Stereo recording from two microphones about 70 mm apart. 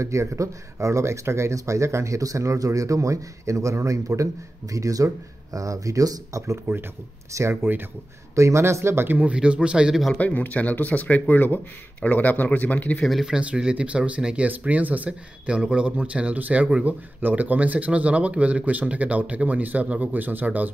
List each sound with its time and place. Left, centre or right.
0.0 s speech: right
9.2 s speech: centre
10.1 s speech: left
13.0 s speech: centre
13.3 s speech: centre